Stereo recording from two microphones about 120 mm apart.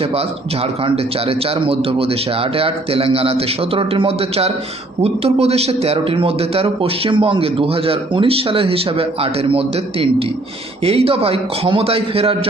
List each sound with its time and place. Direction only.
0.9 s a man's voice: 50° right (ahead or behind)